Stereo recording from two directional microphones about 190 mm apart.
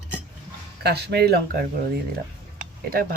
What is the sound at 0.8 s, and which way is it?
Speech, 60° right (ahead or behind).